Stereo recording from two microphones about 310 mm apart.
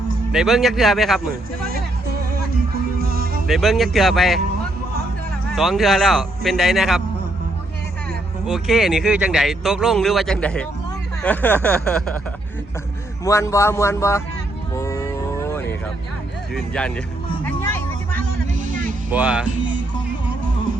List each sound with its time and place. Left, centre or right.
0.3 s speech: centre
3.0 s music: right
3.4 s speech: centre
5.5 s speech: centre
8.4 s speech: centre
13.2 s a man's voice: centre
14.7 s vehicle: centre
16.6 s speech: centre
17.4 s music: centre
19.1 s speech: centre